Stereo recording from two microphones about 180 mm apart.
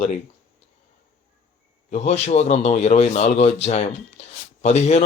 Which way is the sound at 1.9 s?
35° left (ahead or behind).